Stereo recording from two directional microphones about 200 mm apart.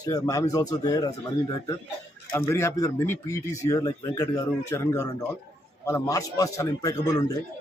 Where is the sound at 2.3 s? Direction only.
15° left (ahead or behind).